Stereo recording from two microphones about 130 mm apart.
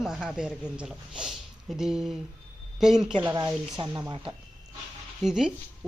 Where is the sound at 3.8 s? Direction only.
40° right (ahead or behind).